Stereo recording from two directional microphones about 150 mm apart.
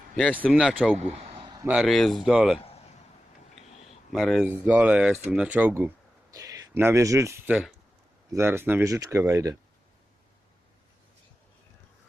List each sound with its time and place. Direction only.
0.5 s speech: centre (ahead or behind)
0.9 s a sound: 45° right (ahead or behind)
1.6 s speech: 5° right (ahead or behind)
4.1 s speech: centre (ahead or behind)
4.4 s speech: 10° right (ahead or behind)